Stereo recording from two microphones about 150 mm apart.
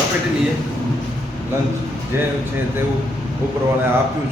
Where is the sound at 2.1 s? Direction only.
15° right (ahead or behind).